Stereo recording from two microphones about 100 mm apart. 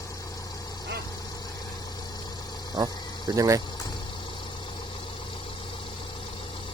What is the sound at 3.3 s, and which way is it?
Speech, 35° right (ahead or behind).